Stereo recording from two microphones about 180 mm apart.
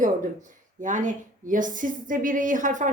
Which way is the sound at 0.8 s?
45° right (ahead or behind).